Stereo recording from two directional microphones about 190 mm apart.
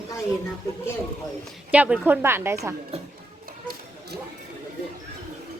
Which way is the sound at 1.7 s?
10° right (ahead or behind).